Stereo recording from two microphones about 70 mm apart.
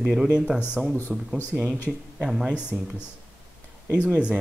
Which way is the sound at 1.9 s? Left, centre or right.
Centre.